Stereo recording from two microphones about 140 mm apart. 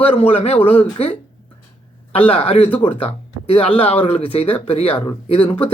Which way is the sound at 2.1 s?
40° left (ahead or behind).